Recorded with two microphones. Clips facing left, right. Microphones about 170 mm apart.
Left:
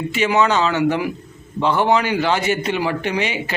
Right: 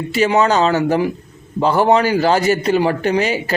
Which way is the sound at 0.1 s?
35° right (ahead or behind).